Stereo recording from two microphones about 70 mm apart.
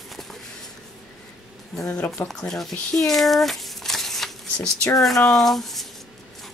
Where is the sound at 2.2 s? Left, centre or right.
Left.